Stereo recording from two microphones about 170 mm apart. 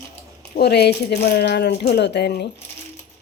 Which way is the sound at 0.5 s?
75° left (ahead or behind).